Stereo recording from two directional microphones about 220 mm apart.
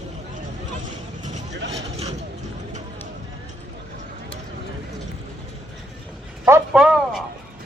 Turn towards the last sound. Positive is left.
turn(degrees=0)  # may be behind; listen again after turning